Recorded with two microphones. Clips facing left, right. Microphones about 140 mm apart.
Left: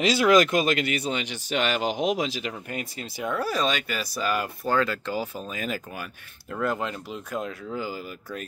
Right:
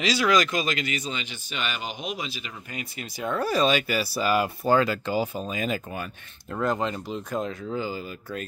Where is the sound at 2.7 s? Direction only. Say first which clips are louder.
Left 3 dB; 45° left (ahead or behind).